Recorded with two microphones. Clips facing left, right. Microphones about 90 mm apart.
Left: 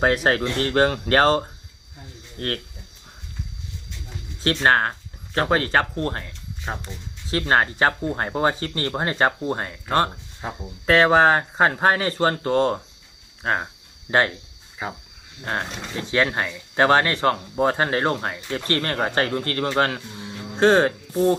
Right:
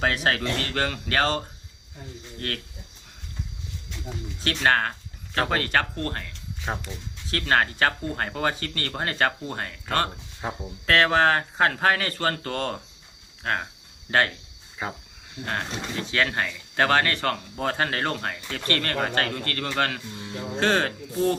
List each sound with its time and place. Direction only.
0.0 s speech: 35° left (ahead or behind)
4.4 s speech: 30° left (ahead or behind)
10.8 s speech: 25° left (ahead or behind)
14.8 s speech: 5° left (ahead or behind)
15.4 s speech: 30° left (ahead or behind)